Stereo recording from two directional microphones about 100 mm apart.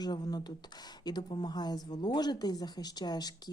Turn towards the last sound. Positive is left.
turn(degrees=45)  # may be behind; listen again after turning